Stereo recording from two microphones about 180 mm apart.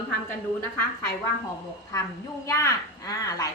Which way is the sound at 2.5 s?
15° left (ahead or behind).